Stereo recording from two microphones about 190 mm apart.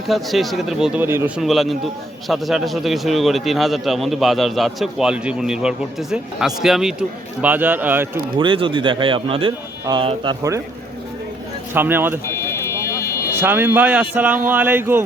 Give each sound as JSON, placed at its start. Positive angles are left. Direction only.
{"t": 0.1, "sound": "a man's voice", "side_deg": 0}
{"t": 1.4, "sound": "a man's voice", "side_deg": 0}
{"t": 8.4, "sound": "speech", "side_deg": -25}
{"t": 11.7, "sound": "a man's voice", "side_deg": -10}
{"t": 12.3, "sound": "a sound", "side_deg": 15}
{"t": 13.4, "sound": "a man's voice", "side_deg": -10}